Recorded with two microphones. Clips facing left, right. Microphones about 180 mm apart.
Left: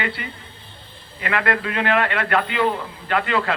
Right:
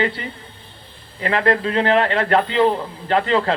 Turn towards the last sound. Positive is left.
turn(degrees=-30)  # may be behind; listen again after turning